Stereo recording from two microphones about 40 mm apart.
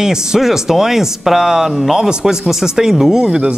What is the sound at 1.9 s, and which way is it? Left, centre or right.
Speech, centre.